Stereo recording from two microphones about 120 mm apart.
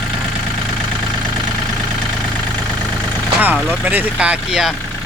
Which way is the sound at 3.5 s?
15° left (ahead or behind).